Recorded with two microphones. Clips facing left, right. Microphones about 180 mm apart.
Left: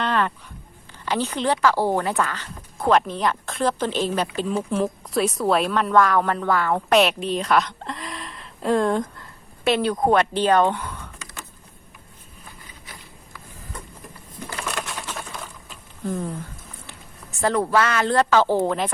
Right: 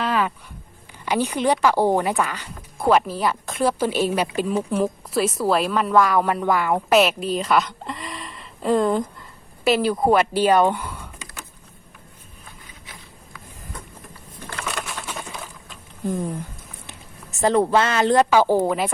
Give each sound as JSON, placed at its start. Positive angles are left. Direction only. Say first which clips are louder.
{"t": 0.0, "sound": "a sound", "louder": "even", "side_deg": -5}
{"t": 1.0, "sound": "a woman's voice", "louder": "right 2 dB", "side_deg": -15}
{"t": 7.0, "sound": "speech", "louder": "right 1 dB", "side_deg": 0}
{"t": 14.6, "sound": "a sound", "louder": "even", "side_deg": 0}
{"t": 16.0, "sound": "a woman's voice", "louder": "right 2 dB", "side_deg": -15}
{"t": 17.4, "sound": "a woman's voice", "louder": "right 2 dB", "side_deg": -25}